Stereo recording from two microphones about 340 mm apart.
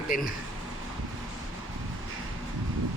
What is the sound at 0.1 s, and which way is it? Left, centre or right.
Speech, left.